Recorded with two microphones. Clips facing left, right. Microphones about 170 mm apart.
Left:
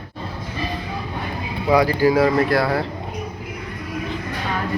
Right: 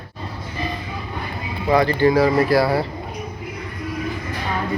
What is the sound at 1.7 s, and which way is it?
Speech, 5° left (ahead or behind).